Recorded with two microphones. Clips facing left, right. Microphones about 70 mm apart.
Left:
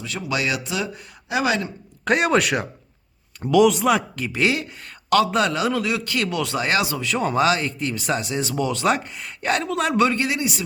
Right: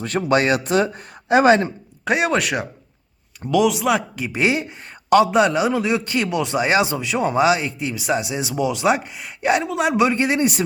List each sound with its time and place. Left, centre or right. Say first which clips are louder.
0.0 s speech: right 7 dB; right
2.0 s a man's voice: left 1 dB; centre
4.2 s a man's voice: right 2 dB; centre